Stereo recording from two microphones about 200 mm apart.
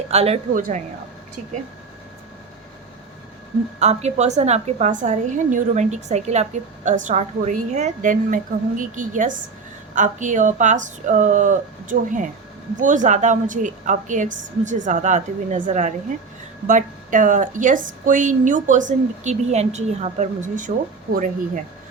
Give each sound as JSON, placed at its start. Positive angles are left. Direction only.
{"t": 0.1, "sound": "speech", "side_deg": -35}
{"t": 3.8, "sound": "speech", "side_deg": -35}